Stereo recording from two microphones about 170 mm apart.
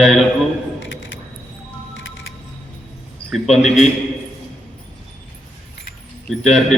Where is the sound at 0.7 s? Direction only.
90° left.